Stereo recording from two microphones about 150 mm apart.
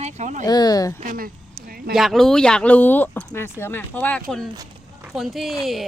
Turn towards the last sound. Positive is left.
turn(degrees=0)  # may be behind; listen again after turning